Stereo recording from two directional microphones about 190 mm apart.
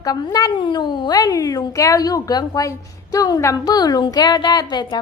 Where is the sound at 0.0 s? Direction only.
20° left (ahead or behind).